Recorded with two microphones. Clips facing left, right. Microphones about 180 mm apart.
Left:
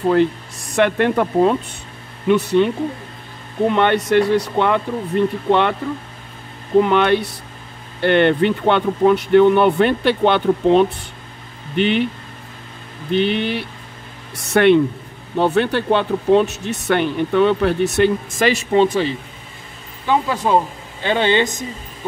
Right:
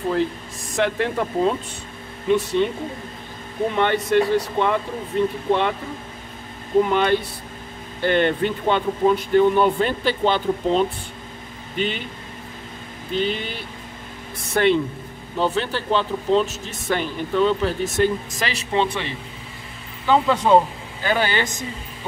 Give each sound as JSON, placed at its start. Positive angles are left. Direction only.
{"t": 0.1, "sound": "speech", "side_deg": 65}
{"t": 3.7, "sound": "speech", "side_deg": 70}
{"t": 6.8, "sound": "speech", "side_deg": 65}
{"t": 13.1, "sound": "speech", "side_deg": 65}
{"t": 18.4, "sound": "speech", "side_deg": 45}
{"t": 20.1, "sound": "speech", "side_deg": 10}
{"t": 21.0, "sound": "speech", "side_deg": 25}